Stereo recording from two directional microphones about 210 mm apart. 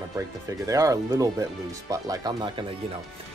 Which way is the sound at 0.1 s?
15° right (ahead or behind).